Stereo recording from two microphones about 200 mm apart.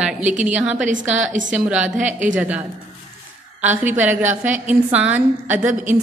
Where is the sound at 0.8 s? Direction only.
40° right (ahead or behind).